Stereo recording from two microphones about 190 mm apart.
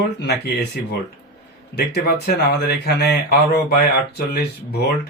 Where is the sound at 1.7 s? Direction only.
60° left (ahead or behind).